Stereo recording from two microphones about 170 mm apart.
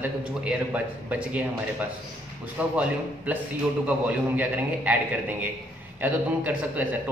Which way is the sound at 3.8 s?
10° right (ahead or behind).